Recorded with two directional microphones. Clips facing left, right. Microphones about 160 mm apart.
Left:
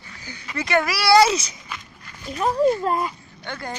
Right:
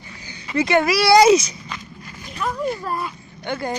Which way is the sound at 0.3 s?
25° right (ahead or behind).